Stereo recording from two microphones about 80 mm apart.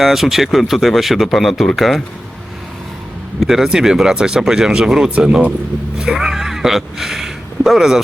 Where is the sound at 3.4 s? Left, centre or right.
Centre.